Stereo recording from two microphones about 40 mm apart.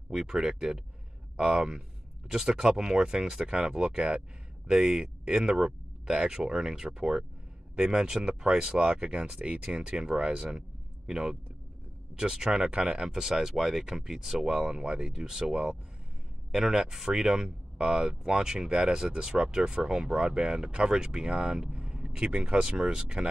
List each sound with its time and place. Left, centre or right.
0.2 s speech: centre
13.1 s speech: centre
14.4 s speech: centre